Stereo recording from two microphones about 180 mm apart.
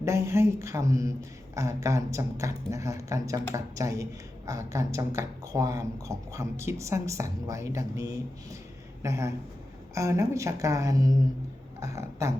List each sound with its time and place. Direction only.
0.0 s speech: 15° right (ahead or behind)